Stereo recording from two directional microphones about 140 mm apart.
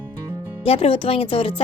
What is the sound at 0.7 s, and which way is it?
Speech, 40° left (ahead or behind).